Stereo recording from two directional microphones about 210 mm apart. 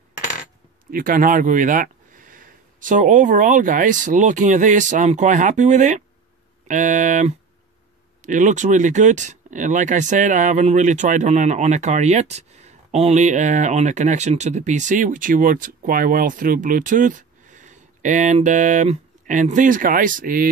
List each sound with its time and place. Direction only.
0.9 s speech: 40° right (ahead or behind)